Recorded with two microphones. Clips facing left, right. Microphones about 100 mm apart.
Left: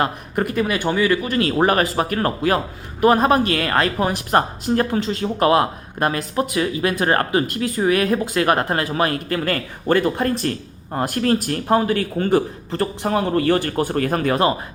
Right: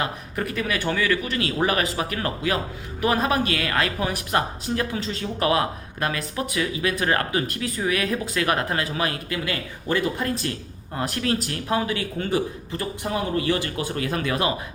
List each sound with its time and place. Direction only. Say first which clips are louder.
0.0 s speech: left 6 dB; 40° left (ahead or behind)
1.3 s speech: left 6 dB; 40° left (ahead or behind)
12.7 s speech: left 8 dB; 60° left (ahead or behind); by 14.5 s 40° left (ahead or behind)